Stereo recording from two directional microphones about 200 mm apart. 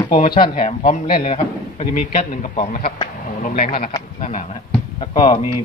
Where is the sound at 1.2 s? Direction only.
30° left (ahead or behind).